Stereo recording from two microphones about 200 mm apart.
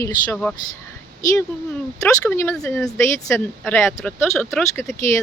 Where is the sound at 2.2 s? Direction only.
10° left (ahead or behind).